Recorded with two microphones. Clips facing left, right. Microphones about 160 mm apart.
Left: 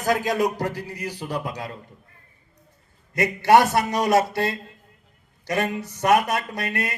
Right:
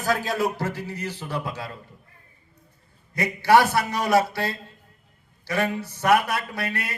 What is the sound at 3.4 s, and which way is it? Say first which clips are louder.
A man's voice: left 1 dB; 20° left (ahead or behind).